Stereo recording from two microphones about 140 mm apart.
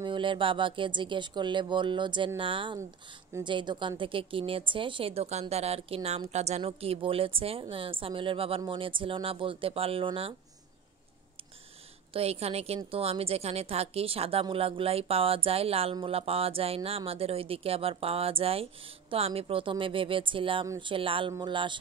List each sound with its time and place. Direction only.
0.0 s a woman's voice: 35° right (ahead or behind)
12.1 s a woman's voice: 45° right (ahead or behind)